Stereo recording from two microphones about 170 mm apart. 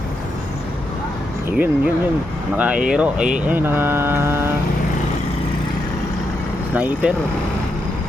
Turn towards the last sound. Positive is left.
turn(degrees=-10)  # may be behind; listen again after turning